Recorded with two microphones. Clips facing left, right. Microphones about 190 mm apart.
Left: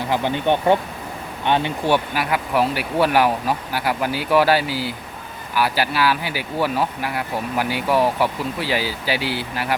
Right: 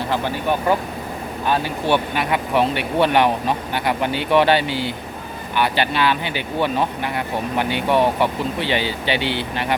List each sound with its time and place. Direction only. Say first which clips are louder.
0.4 s speech: left 3 dB; 25° left (ahead or behind)
1.9 s speech: right 1 dB; 5° left (ahead or behind)